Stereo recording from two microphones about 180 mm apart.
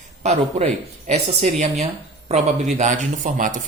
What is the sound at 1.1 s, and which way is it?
Speech, 40° right (ahead or behind).